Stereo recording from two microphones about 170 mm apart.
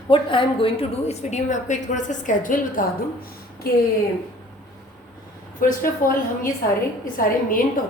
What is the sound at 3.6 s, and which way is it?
Speech, 65° left (ahead or behind).